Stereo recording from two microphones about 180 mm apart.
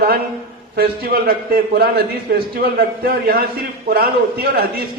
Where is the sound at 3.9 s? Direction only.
60° right (ahead or behind).